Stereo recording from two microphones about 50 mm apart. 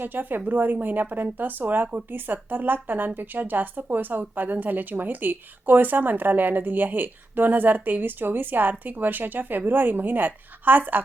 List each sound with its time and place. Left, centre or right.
0.0 s a woman's voice: right